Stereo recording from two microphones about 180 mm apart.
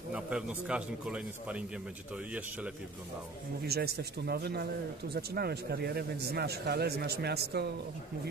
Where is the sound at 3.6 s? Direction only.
60° right (ahead or behind).